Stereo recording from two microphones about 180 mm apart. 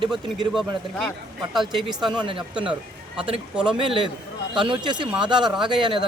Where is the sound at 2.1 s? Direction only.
25° right (ahead or behind).